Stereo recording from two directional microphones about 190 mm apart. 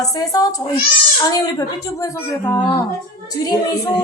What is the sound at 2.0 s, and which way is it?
Speech, 15° left (ahead or behind).